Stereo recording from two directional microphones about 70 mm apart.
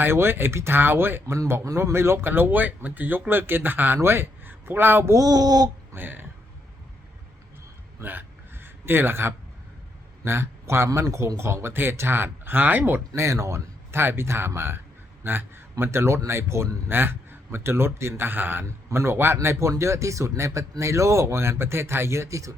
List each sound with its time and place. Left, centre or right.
0.0 s speech: right
5.1 s speech: right
5.9 s a man's voice: right
8.0 s a sound: right
10.2 s a man's voice: right
10.8 s speech: right
13.2 s speech: right
13.9 s a man's voice: right
18.6 s speech: right